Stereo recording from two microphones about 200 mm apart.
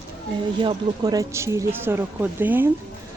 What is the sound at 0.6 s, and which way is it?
Speech, 20° right (ahead or behind).